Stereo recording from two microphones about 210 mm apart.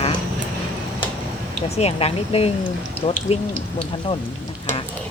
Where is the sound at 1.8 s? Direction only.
30° left (ahead or behind).